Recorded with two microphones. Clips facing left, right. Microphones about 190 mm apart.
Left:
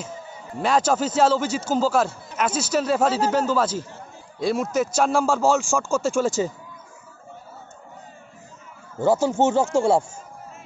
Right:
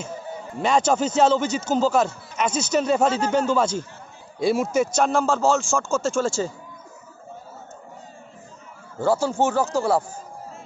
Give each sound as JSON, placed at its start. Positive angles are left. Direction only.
{"t": 0.6, "sound": "a man's voice", "side_deg": 5}
{"t": 9.0, "sound": "speech", "side_deg": 20}